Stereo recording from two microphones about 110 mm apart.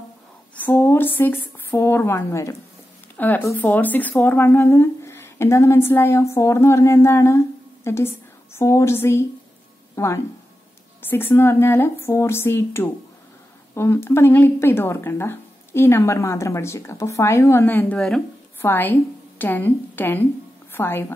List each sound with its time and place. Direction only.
0.6 s speech: 20° left (ahead or behind)
17.9 s speech: 5° left (ahead or behind)
18.6 s a woman's voice: 20° left (ahead or behind)